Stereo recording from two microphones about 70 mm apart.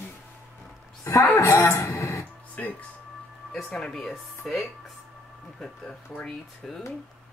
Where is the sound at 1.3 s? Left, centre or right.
Left.